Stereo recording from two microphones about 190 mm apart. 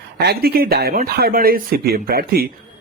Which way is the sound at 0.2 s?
55° right (ahead or behind).